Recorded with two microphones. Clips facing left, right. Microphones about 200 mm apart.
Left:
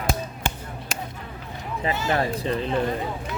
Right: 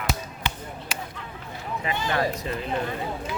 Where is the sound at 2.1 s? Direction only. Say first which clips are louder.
Even; 30° left (ahead or behind).